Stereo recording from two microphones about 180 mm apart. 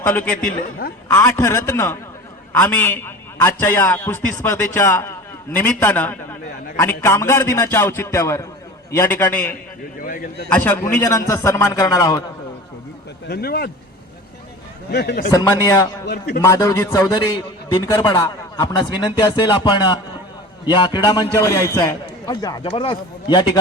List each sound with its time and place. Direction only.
0.0 s a man's voice: 10° left (ahead or behind)
10.0 s a man's voice: 50° left (ahead or behind)
10.5 s a man's voice: 10° left (ahead or behind)
13.2 s a man's voice: 60° left (ahead or behind)
14.8 s a man's voice: 65° left (ahead or behind)
15.3 s a man's voice: 20° left (ahead or behind)
16.0 s a man's voice: 65° left (ahead or behind)
16.4 s a man's voice: 20° left (ahead or behind)